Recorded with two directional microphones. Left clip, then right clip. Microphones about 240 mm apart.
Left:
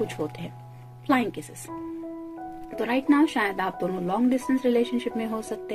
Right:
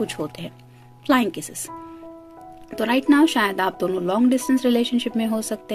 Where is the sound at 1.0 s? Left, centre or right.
Right.